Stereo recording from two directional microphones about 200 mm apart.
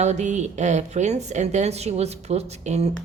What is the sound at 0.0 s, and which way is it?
A woman's voice, 35° right (ahead or behind).